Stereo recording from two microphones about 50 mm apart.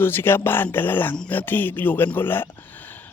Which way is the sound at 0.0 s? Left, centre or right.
Left.